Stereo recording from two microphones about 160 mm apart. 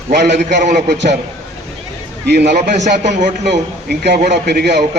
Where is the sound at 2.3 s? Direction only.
90° right.